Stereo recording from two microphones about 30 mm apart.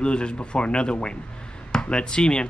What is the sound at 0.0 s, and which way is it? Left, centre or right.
A man's voice, left.